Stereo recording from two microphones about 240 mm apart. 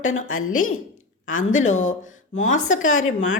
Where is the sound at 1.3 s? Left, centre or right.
Left.